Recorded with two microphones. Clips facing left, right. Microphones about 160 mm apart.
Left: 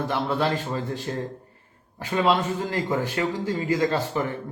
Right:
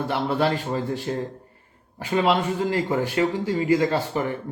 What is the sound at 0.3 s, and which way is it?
A man's voice, 10° right (ahead or behind).